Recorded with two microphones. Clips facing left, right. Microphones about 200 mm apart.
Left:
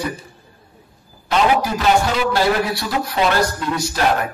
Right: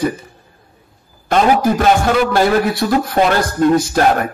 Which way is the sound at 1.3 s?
50° right (ahead or behind).